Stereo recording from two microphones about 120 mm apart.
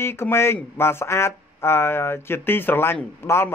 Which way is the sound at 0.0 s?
20° left (ahead or behind).